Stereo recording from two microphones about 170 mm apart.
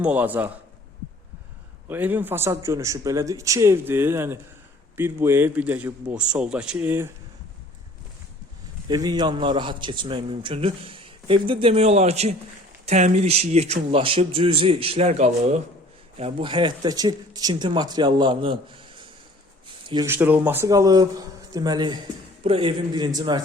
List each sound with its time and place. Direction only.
0.0 s a man's voice: 10° right (ahead or behind)
1.9 s a man's voice: 10° right (ahead or behind)
8.9 s a man's voice: 25° right (ahead or behind)
20.1 s speech: 10° right (ahead or behind)